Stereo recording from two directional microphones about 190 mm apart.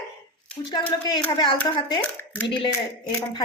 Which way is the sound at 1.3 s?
25° left (ahead or behind).